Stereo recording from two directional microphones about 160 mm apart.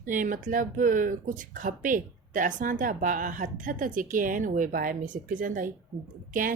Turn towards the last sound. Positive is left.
turn(degrees=-55)  # may be behind; listen again after turning